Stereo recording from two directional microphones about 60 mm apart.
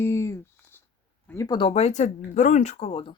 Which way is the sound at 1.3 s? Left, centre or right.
Left.